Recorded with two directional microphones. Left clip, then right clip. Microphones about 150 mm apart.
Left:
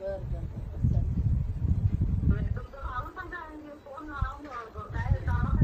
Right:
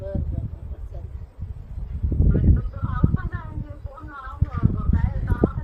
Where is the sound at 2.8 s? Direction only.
15° right (ahead or behind).